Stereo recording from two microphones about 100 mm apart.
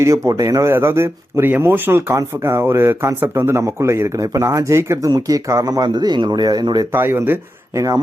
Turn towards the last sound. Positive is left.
turn(degrees=-30)  # may be behind; listen again after turning